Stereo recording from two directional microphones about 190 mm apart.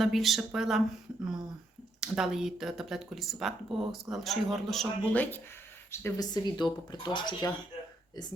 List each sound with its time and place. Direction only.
0.0 s speech: centre (ahead or behind)
2.0 s speech: 5° right (ahead or behind); by 7.5 s 25° left (ahead or behind)